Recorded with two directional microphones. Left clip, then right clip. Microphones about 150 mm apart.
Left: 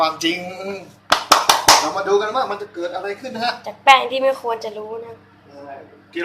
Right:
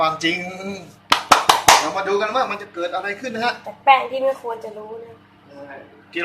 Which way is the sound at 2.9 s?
45° right (ahead or behind).